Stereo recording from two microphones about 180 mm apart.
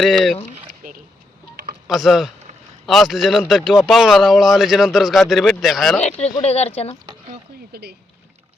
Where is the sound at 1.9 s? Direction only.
Centre (ahead or behind).